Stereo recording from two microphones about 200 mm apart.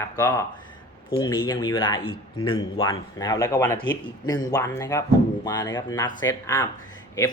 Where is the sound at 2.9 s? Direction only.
20° left (ahead or behind).